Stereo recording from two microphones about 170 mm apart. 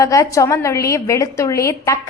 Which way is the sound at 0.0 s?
20° left (ahead or behind).